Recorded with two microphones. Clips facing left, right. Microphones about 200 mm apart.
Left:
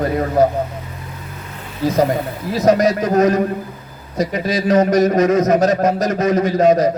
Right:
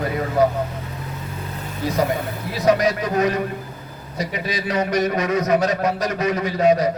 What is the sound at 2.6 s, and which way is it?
A man's voice, 45° left (ahead or behind).